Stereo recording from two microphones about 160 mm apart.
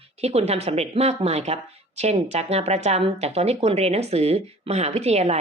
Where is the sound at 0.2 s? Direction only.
40° right (ahead or behind).